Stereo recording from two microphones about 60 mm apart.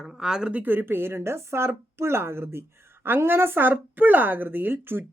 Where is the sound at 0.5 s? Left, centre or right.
Right.